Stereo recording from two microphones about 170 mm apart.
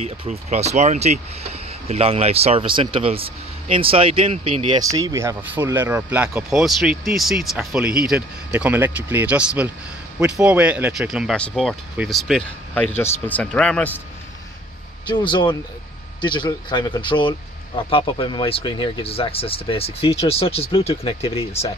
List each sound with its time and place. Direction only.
0.0 s speech: 40° right (ahead or behind)
4.8 s speech: 20° right (ahead or behind); by 13.9 s 5° left (ahead or behind)
15.0 s speech: 25° left (ahead or behind)